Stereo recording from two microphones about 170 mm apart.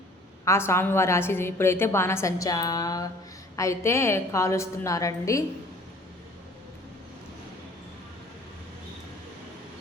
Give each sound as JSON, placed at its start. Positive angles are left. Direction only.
{"t": 0.4, "sound": "a woman's voice", "side_deg": 15}